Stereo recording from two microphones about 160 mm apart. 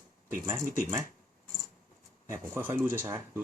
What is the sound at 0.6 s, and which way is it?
Speech, 60° right (ahead or behind).